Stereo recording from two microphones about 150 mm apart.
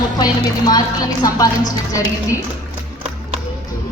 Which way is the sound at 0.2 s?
25° left (ahead or behind).